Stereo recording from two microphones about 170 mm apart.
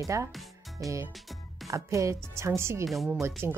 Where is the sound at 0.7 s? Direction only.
20° right (ahead or behind).